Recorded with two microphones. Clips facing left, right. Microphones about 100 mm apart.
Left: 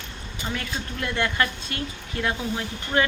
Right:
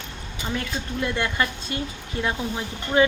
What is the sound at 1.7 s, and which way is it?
Speech, 20° right (ahead or behind).